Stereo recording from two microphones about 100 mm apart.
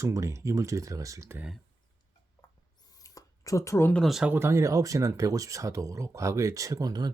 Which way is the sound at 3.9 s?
Centre (ahead or behind).